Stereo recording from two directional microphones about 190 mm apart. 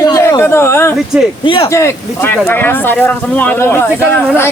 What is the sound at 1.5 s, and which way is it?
Speech, 25° left (ahead or behind).